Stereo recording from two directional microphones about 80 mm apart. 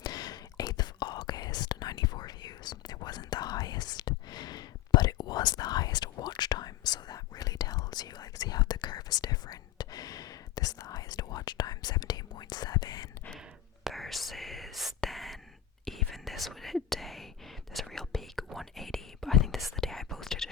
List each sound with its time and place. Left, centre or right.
0.0 s whispering: left
13.8 s whispering: centre
15.0 s a sound: centre
15.9 s whispering: centre